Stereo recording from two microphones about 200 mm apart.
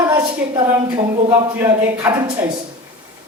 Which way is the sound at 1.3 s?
10° right (ahead or behind).